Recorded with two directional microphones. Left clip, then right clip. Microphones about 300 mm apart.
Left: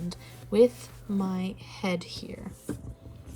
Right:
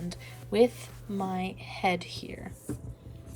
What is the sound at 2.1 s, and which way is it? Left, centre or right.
Speech, right.